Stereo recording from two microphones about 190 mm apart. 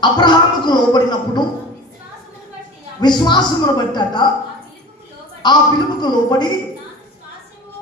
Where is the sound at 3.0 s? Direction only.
25° left (ahead or behind).